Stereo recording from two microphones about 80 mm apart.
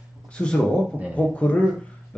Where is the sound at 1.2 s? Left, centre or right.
Centre.